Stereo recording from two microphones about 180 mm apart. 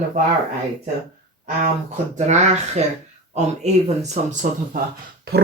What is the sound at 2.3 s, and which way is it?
Speech, 40° right (ahead or behind).